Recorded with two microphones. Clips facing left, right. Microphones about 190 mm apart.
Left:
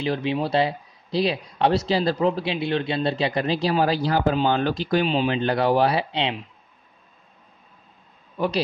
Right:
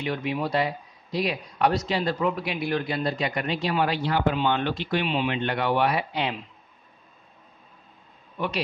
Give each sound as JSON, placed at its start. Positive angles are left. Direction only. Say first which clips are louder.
{"t": 0.0, "sound": "speech", "louder": "left 4 dB", "side_deg": 30}